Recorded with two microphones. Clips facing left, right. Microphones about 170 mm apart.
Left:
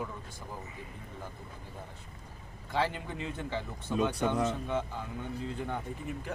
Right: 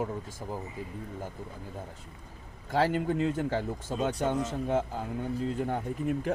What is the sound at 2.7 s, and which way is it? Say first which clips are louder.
Speech: right 6 dB; 45° right (ahead or behind).